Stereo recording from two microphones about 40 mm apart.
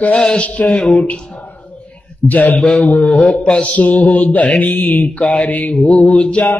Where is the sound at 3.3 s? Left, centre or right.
Centre.